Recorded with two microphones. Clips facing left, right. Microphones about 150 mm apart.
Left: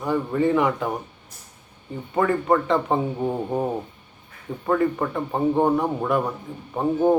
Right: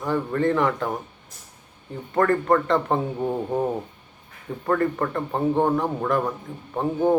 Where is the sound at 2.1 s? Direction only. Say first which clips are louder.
Right 1 dB; 5° left (ahead or behind).